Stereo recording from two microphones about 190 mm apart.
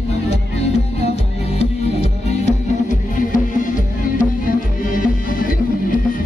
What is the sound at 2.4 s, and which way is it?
Music, 40° left (ahead or behind).